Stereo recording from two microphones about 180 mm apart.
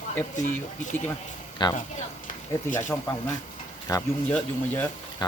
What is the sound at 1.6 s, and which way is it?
Speech, 25° left (ahead or behind).